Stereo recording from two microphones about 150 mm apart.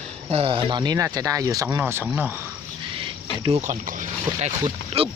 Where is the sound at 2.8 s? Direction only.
35° right (ahead or behind).